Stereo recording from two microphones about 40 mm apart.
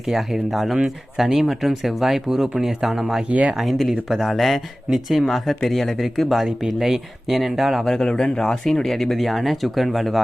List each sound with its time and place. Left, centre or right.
0.1 s speech: centre
3.2 s speech: right
3.6 s speech: centre
7.9 s speech: centre